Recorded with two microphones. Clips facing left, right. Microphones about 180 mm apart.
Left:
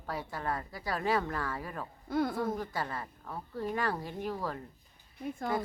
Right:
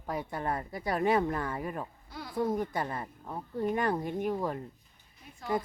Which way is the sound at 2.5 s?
20° right (ahead or behind).